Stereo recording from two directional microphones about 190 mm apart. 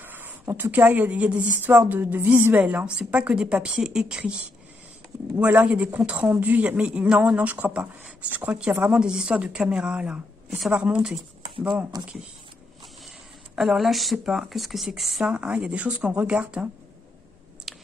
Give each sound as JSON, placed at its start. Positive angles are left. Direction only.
{"t": 0.0, "sound": "speech", "side_deg": -10}
{"t": 11.9, "sound": "speech", "side_deg": -20}
{"t": 13.6, "sound": "speech", "side_deg": 0}
{"t": 17.7, "sound": "a sound", "side_deg": 0}